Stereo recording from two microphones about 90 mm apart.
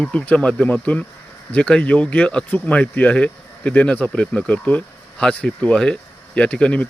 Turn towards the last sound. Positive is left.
turn(degrees=15)  # may be behind; listen again after turning